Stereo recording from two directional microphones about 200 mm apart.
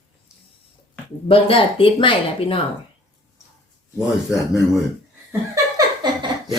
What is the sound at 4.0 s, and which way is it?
Speech, centre (ahead or behind).